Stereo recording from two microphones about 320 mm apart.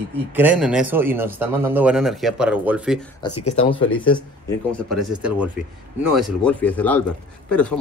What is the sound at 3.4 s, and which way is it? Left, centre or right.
Speech, centre.